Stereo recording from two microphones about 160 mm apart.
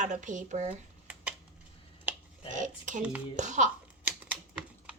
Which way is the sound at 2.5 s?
50° right (ahead or behind).